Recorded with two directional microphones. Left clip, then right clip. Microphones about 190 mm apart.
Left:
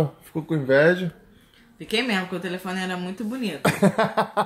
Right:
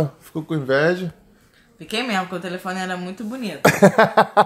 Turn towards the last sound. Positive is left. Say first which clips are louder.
# right 8 dB
turn(degrees=-45)  # may be behind; listen again after turning